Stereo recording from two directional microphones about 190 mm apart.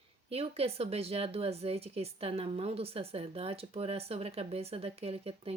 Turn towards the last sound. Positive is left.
turn(degrees=-30)  # may be behind; listen again after turning